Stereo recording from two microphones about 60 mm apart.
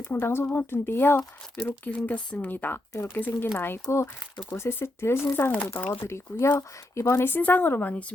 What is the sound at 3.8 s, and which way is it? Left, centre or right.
Speech, left.